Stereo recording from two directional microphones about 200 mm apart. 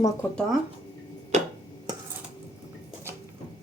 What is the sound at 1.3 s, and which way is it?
Finger snapping, 35° right (ahead or behind).